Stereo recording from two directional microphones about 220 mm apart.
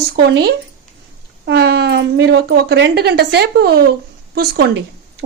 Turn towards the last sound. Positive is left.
turn(degrees=-45)  # may be behind; listen again after turning